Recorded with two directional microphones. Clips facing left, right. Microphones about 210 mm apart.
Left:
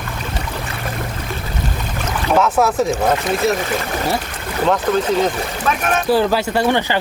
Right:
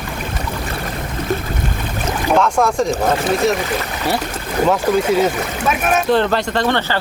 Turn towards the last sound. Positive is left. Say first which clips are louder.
# left 1 dB
turn(degrees=10)  # may be behind; listen again after turning